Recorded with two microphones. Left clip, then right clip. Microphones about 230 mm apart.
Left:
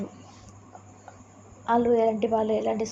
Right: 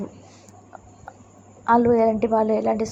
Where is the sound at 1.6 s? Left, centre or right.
Right.